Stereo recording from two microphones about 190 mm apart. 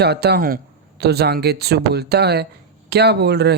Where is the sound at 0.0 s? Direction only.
60° right (ahead or behind).